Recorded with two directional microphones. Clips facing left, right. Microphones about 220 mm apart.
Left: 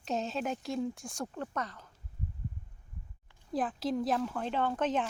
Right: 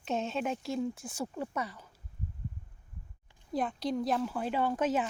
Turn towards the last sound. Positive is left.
turn(degrees=-10)  # may be behind; listen again after turning